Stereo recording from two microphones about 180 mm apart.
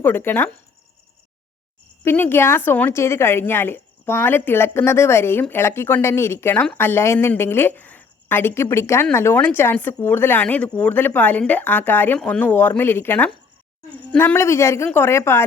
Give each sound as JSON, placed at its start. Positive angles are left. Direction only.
{"t": 0.0, "sound": "a woman's voice", "side_deg": 10}
{"t": 2.0, "sound": "a woman's voice", "side_deg": 10}